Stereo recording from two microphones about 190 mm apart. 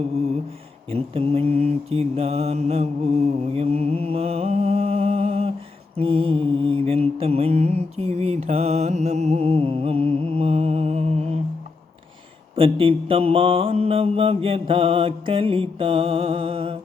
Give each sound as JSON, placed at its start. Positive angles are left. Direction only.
{"t": 0.9, "sound": "mantra", "side_deg": -30}
{"t": 12.5, "sound": "mantra", "side_deg": -30}